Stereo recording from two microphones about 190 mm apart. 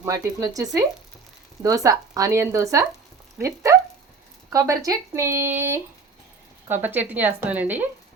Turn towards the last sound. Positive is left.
turn(degrees=-10)  # may be behind; listen again after turning